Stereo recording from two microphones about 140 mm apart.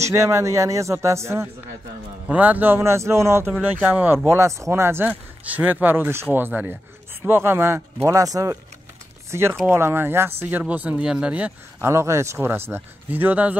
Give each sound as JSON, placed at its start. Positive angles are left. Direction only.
{"t": 0.0, "sound": "speech", "side_deg": -20}
{"t": 3.5, "sound": "speech", "side_deg": -10}